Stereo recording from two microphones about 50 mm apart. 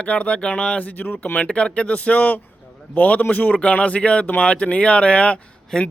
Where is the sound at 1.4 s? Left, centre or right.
Left.